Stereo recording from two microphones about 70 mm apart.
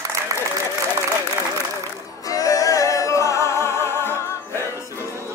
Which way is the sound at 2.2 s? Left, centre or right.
Left.